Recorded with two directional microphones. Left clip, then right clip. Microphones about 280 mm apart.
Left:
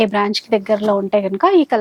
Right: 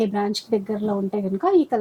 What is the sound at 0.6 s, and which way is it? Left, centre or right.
Speech, centre.